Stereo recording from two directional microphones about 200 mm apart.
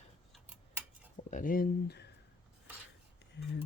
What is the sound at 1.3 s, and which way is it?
Speech, 40° left (ahead or behind).